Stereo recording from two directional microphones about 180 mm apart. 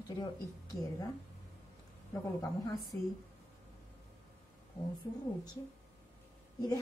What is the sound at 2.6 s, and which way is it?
Speech, 20° left (ahead or behind).